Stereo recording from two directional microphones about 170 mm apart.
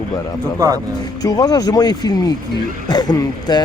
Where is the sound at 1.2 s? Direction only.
20° left (ahead or behind).